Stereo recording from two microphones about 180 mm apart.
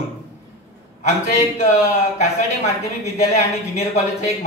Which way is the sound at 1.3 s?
40° left (ahead or behind).